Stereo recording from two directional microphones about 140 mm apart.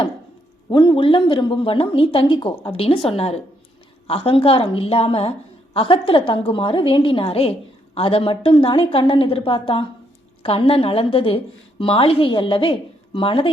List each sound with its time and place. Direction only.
0.7 s speech: 35° left (ahead or behind)